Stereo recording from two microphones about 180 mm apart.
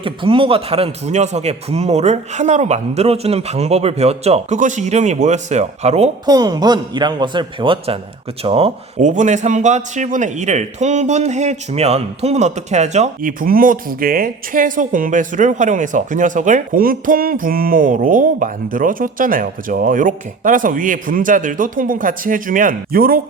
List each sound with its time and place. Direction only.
0.0 s a man's voice: 30° right (ahead or behind)
6.2 s speech: 20° right (ahead or behind); by 23.2 s 55° right (ahead or behind)